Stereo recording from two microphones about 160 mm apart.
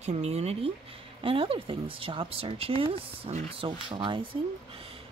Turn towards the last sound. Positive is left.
turn(degrees=-30)  # may be behind; listen again after turning